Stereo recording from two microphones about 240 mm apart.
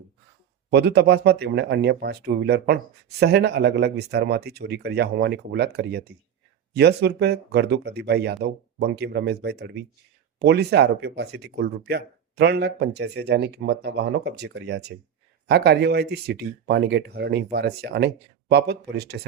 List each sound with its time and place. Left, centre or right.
0.7 s speech: right